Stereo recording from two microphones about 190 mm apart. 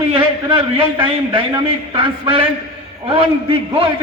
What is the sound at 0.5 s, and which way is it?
A man's voice, 30° right (ahead or behind).